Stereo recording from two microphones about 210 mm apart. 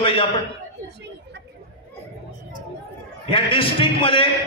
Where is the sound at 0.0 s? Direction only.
25° left (ahead or behind).